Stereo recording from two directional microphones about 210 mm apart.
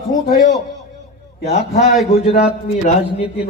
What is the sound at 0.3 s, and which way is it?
A man's voice, 45° left (ahead or behind).